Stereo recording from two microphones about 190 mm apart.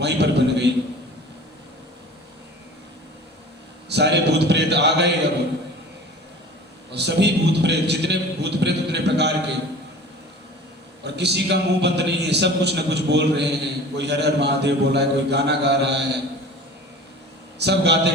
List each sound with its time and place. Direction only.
0.0 s a sound: 65° right (ahead or behind)
3.8 s a man's voice: 65° right (ahead or behind)
6.9 s a man's voice: 65° right (ahead or behind)
11.0 s a man's voice: 65° right (ahead or behind)
17.6 s a man's voice: 65° right (ahead or behind)